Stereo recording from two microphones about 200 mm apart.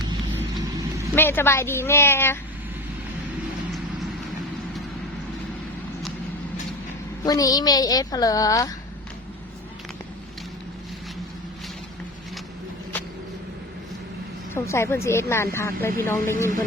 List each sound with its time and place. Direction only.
1.1 s a woman's voice: 10° left (ahead or behind)
7.3 s a woman's voice: 20° left (ahead or behind)
14.5 s a woman's voice: 10° left (ahead or behind)